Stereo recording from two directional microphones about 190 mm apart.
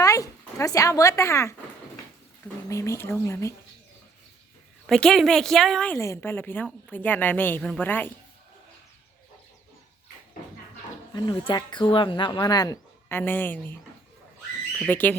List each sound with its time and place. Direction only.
0.0 s speech: 15° left (ahead or behind)
2.6 s a woman's voice: 15° left (ahead or behind)
4.9 s a woman's voice: 5° left (ahead or behind)
11.1 s speech: 25° left (ahead or behind)
14.8 s a woman's voice: 10° left (ahead or behind)